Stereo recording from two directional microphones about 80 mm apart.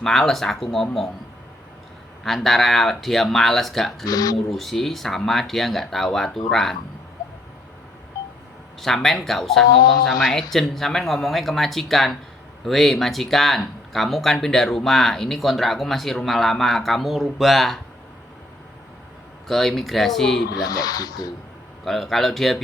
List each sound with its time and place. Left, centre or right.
0.0 s speech: centre
2.2 s speech: centre
4.0 s speech: left
4.4 s speech: centre
8.8 s speech: centre
9.6 s speech: left
10.1 s speech: centre
19.5 s speech: centre
20.7 s speech: left
21.8 s speech: centre